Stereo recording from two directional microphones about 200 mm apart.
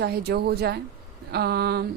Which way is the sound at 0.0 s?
50° right (ahead or behind).